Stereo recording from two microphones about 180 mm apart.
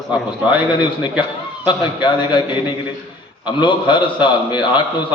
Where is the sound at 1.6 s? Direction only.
25° left (ahead or behind).